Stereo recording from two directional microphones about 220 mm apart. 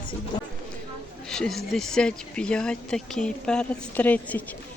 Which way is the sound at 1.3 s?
Centre (ahead or behind).